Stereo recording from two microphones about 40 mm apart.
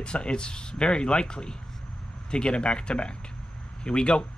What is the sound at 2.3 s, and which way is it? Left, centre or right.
Speech, left.